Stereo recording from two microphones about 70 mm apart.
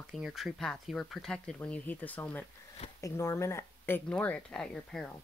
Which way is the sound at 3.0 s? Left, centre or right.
Left.